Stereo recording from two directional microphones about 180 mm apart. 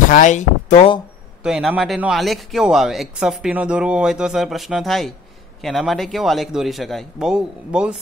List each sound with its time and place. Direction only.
0.1 s speech: 45° left (ahead or behind)
1.4 s a man's voice: 5° right (ahead or behind)